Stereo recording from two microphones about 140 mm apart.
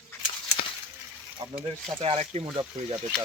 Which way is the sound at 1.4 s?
30° right (ahead or behind).